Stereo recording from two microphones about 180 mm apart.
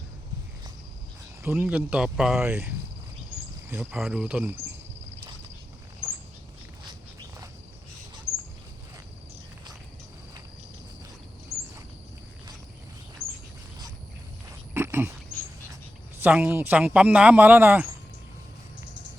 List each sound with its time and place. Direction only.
1.4 s cricket: 15° right (ahead or behind)
1.6 s speech: 5° right (ahead or behind)
11.5 s a sound: 15° right (ahead or behind)
13.2 s bird: 5° left (ahead or behind)
14.7 s a sound: 15° right (ahead or behind)
16.1 s speech: 10° right (ahead or behind)